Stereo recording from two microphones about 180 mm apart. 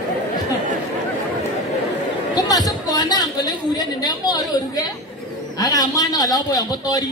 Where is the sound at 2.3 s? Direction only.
20° left (ahead or behind).